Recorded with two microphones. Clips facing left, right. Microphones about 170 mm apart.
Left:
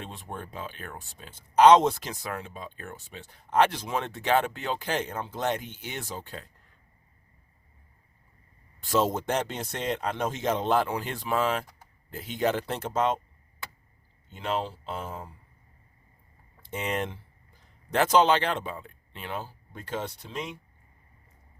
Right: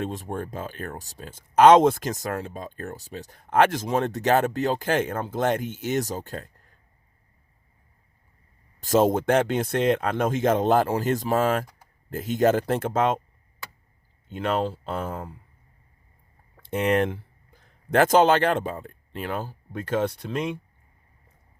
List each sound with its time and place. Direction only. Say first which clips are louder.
0.0 s speech: right 9 dB; 40° right (ahead or behind)
8.8 s speech: right 6 dB; 50° right (ahead or behind)
14.3 s speech: right 5 dB; 55° right (ahead or behind)
16.6 s speech: right 9 dB; 65° right (ahead or behind)
17.9 s speech: right 4 dB; 50° right (ahead or behind)